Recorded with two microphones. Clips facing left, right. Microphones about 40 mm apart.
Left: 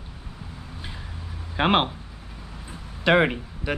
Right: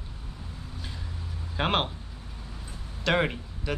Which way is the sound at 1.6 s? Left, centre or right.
Left.